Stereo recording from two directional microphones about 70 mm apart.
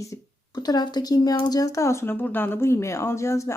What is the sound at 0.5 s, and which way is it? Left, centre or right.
Speech, left.